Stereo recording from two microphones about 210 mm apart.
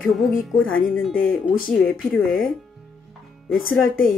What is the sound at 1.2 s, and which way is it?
Speech, 70° left (ahead or behind).